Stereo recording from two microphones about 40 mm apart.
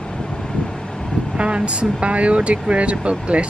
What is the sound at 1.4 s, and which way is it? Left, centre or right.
Speech, right.